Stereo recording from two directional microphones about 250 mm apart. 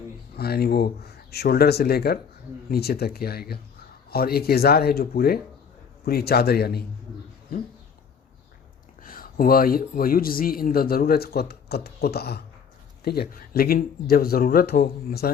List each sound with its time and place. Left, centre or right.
0.3 s speech: left
9.0 s speech: left